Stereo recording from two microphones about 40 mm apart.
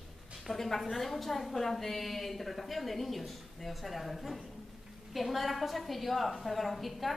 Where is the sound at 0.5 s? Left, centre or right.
Centre.